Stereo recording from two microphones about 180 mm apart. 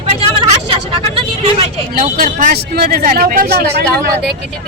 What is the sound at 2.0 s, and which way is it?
Speech, 50° right (ahead or behind).